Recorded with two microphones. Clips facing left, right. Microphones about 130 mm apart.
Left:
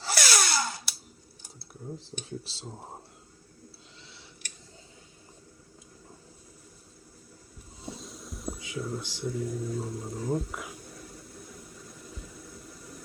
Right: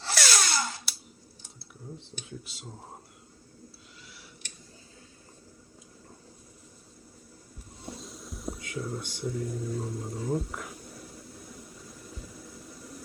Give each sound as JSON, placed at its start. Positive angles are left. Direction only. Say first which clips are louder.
{"t": 0.0, "sound": "drill", "louder": "left 1 dB", "side_deg": 5}
{"t": 2.4, "sound": "speech", "louder": "left 2 dB", "side_deg": 30}
{"t": 7.8, "sound": "a sound", "louder": "left 1 dB", "side_deg": 0}